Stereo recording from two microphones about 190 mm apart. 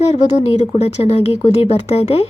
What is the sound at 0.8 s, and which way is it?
Speech, 35° left (ahead or behind).